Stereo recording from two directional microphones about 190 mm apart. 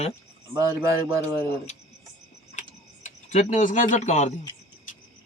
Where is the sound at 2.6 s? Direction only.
40° left (ahead or behind).